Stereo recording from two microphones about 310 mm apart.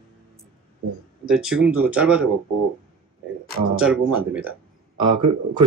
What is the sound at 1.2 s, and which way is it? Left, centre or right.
Speech, centre.